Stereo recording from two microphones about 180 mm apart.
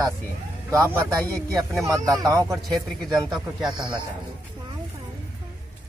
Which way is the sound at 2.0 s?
20° right (ahead or behind).